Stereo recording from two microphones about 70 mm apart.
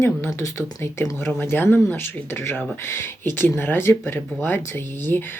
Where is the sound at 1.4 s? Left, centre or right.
Left.